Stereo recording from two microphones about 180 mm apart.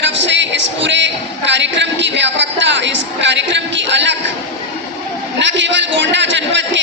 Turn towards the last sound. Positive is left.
turn(degrees=-90)